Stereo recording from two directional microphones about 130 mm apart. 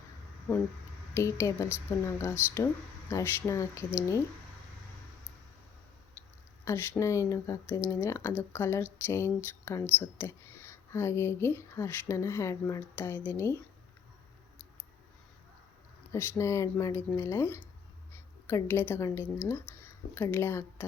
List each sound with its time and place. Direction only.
1.1 s speech: 20° left (ahead or behind)
6.7 s speech: 20° left (ahead or behind)
16.1 s speech: 20° left (ahead or behind)